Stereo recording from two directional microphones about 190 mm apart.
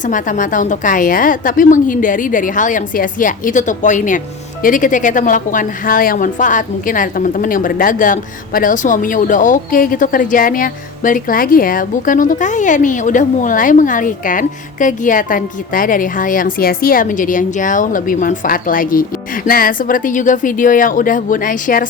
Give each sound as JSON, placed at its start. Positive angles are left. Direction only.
{"t": 0.0, "sound": "a woman's voice", "side_deg": 45}